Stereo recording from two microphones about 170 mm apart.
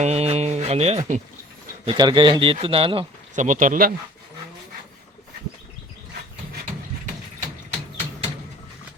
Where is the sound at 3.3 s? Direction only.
45° right (ahead or behind).